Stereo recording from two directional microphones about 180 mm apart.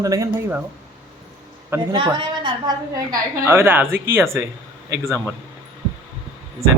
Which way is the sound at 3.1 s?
15° right (ahead or behind).